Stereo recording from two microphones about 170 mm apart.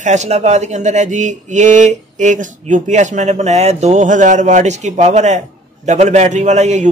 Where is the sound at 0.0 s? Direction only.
45° right (ahead or behind).